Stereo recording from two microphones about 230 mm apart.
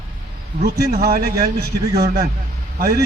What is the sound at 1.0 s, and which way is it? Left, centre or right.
A man's voice, right.